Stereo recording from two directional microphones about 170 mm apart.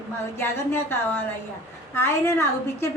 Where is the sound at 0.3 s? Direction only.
15° left (ahead or behind).